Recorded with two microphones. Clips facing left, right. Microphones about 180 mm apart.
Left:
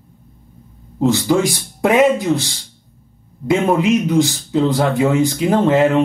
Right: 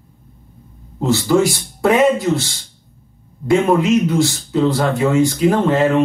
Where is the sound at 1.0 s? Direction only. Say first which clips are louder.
Even; 15° left (ahead or behind).